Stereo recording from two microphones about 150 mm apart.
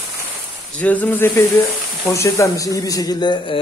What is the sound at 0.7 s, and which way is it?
Speech, 10° left (ahead or behind).